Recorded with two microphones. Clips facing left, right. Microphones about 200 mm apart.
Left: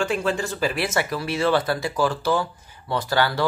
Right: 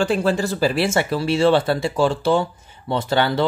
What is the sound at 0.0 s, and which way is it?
Speech, 35° right (ahead or behind).